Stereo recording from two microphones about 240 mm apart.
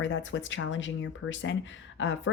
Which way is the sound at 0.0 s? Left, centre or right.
Left.